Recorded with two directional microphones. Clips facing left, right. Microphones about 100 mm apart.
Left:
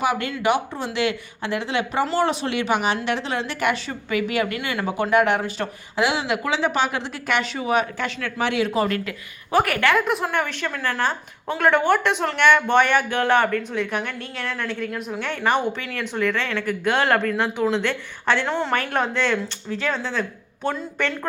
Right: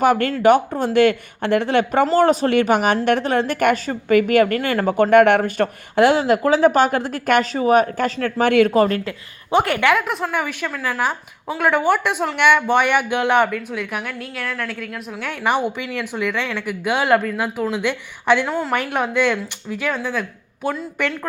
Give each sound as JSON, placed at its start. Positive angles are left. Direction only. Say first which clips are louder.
{"t": 0.0, "sound": "speech", "louder": "right 7 dB", "side_deg": -50}
{"t": 8.9, "sound": "a woman's voice", "louder": "right 3 dB", "side_deg": -25}
{"t": 9.9, "sound": "a woman's voice", "louder": "right 1 dB", "side_deg": 0}